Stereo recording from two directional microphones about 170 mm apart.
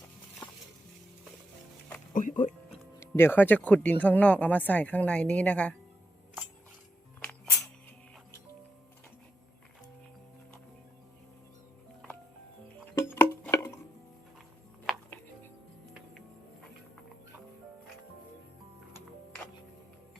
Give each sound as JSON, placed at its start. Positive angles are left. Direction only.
{"t": 2.1, "sound": "speech", "side_deg": 50}
{"t": 3.0, "sound": "speech", "side_deg": 15}
{"t": 13.0, "sound": "music", "side_deg": 15}